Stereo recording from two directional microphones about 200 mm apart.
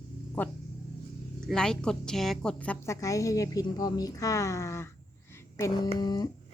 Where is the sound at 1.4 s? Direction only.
5° left (ahead or behind); by 6.3 s 20° left (ahead or behind).